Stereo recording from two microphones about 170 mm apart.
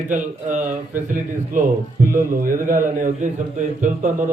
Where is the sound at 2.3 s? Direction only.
55° right (ahead or behind).